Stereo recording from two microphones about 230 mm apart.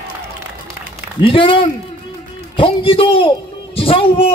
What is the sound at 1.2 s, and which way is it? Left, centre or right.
A man's voice, left.